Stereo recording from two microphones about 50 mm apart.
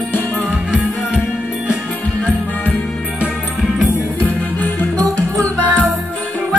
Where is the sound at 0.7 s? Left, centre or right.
Right.